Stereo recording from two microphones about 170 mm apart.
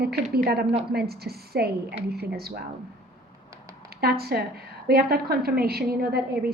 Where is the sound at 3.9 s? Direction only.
65° right (ahead or behind).